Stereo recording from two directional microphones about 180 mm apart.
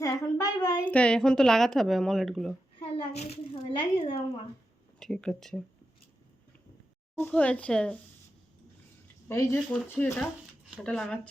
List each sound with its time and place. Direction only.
0.0 s a woman's voice: 15° left (ahead or behind); by 2.6 s centre (ahead or behind)
2.7 s a sound: 30° left (ahead or behind)
3.2 s speech: 35° left (ahead or behind)
4.9 s speech: 5° left (ahead or behind)
7.2 s speech: 10° left (ahead or behind)
9.3 s speech: 15° left (ahead or behind)